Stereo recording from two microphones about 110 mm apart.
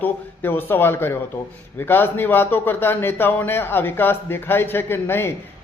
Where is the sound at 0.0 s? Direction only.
20° left (ahead or behind).